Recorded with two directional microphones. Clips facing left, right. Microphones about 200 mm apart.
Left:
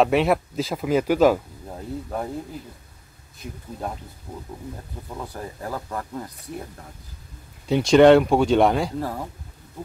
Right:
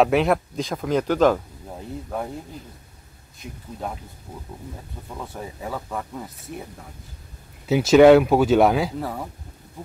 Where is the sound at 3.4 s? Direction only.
Centre (ahead or behind).